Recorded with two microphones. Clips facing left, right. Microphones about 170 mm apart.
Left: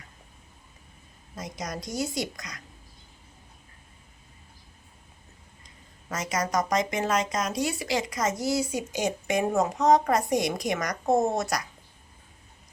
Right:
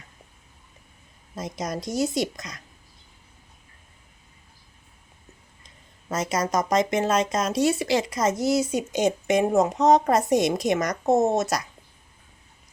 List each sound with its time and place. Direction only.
1.4 s speech: 25° right (ahead or behind)
6.1 s speech: 25° right (ahead or behind)